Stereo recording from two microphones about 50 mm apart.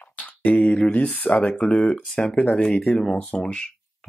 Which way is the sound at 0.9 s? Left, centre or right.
Left.